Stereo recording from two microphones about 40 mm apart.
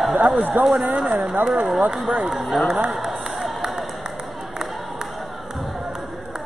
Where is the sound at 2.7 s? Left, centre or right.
Centre.